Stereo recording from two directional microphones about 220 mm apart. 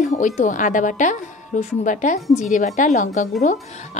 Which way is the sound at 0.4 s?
35° left (ahead or behind).